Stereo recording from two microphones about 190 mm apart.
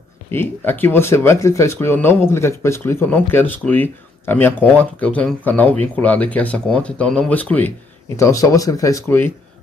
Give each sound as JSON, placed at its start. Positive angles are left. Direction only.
{"t": 0.3, "sound": "speech", "side_deg": 10}